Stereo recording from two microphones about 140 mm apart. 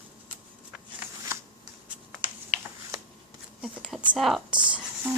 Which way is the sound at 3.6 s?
Centre (ahead or behind).